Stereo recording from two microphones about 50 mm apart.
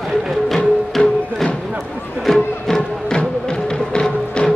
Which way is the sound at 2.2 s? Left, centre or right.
Centre.